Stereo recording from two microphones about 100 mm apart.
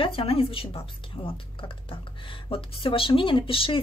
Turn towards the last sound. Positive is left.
turn(degrees=60)  # may be behind; listen again after turning